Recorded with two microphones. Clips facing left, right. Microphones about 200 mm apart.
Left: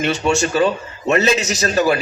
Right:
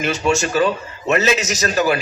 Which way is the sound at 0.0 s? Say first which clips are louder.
Left 1 dB; 35° left (ahead or behind).